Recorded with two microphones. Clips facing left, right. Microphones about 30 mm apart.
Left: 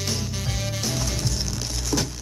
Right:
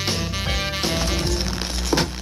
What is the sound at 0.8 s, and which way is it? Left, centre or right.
Music, right.